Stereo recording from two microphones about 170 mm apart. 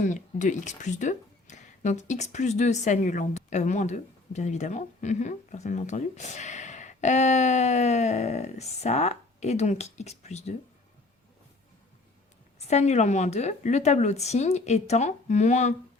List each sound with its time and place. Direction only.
0.0 s speech: 45° left (ahead or behind)
12.5 s speech: 40° left (ahead or behind)